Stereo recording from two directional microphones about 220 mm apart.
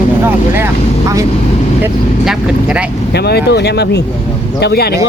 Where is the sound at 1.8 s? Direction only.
5° right (ahead or behind).